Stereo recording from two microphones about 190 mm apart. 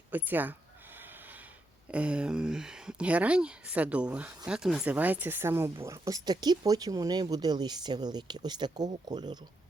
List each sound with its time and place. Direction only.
0.1 s speech: 10° right (ahead or behind)
0.9 s snort: 10° right (ahead or behind)
1.9 s speech: 5° right (ahead or behind); by 9.4 s 20° right (ahead or behind)